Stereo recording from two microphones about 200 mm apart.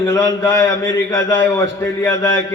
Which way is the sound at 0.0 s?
15° left (ahead or behind).